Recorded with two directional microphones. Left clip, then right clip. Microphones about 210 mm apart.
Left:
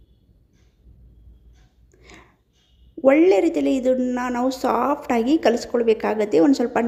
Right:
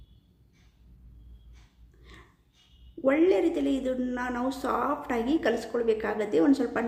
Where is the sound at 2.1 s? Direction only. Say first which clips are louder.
Left 6 dB; 30° left (ahead or behind).